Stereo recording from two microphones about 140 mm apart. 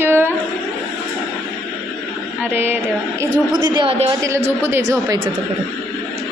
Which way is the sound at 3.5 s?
35° right (ahead or behind).